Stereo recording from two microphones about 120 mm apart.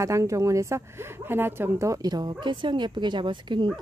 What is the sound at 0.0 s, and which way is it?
A woman's voice, 25° right (ahead or behind).